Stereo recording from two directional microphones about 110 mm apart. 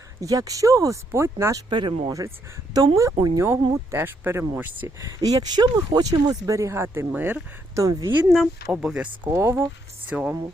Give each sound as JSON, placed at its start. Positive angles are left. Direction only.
{"t": 0.2, "sound": "speech", "side_deg": -30}
{"t": 1.7, "sound": "speech", "side_deg": -45}
{"t": 2.0, "sound": "speech", "side_deg": -30}
{"t": 4.9, "sound": "speech", "side_deg": -35}
{"t": 7.2, "sound": "speech", "side_deg": -15}
{"t": 7.8, "sound": "speech", "side_deg": -30}
{"t": 8.7, "sound": "speech", "side_deg": -5}
{"t": 9.3, "sound": "speech", "side_deg": -25}
{"t": 10.1, "sound": "speech", "side_deg": -5}